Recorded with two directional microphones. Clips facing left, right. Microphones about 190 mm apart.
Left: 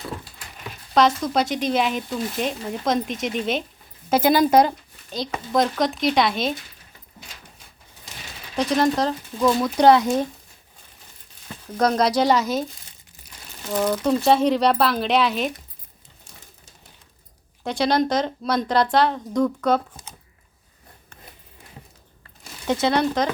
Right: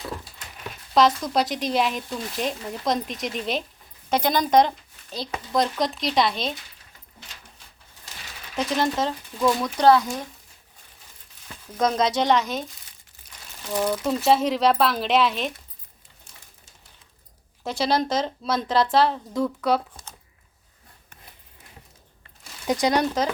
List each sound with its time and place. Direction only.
0.9 s speech: centre (ahead or behind)
8.5 s speech: centre (ahead or behind)
9.8 s speech: 20° left (ahead or behind)
11.8 s speech: centre (ahead or behind)
13.7 s speech: 5° right (ahead or behind)
17.6 s speech: centre (ahead or behind)
22.6 s speech: 15° right (ahead or behind)